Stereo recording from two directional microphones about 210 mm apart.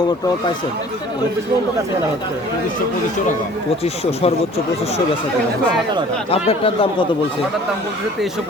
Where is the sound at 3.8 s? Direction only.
30° left (ahead or behind).